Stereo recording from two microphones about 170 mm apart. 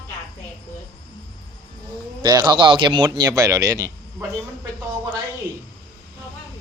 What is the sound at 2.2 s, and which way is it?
Speech, 25° right (ahead or behind).